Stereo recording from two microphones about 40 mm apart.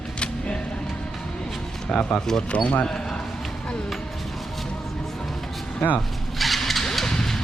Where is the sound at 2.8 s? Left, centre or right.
Centre.